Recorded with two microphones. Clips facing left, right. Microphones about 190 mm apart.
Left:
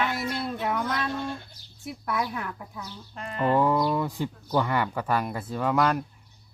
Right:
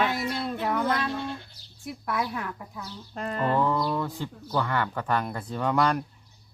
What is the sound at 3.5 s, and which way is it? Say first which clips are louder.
Speech: left 3 dB; 10° left (ahead or behind).